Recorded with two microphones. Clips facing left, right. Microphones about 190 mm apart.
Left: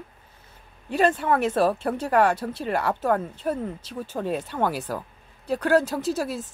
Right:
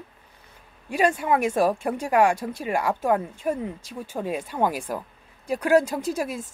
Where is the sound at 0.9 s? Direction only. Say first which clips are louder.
Even; 10° right (ahead or behind).